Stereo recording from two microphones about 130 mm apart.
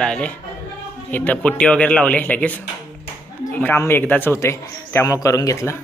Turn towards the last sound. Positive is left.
turn(degrees=25)  # may be behind; listen again after turning